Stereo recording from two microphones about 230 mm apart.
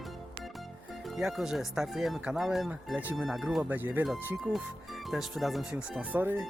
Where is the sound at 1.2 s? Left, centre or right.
Centre.